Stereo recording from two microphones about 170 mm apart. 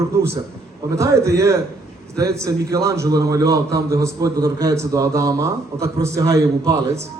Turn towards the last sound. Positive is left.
turn(degrees=-20)  # may be behind; listen again after turning